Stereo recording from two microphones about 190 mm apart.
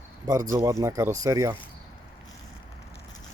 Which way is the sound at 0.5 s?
15° right (ahead or behind).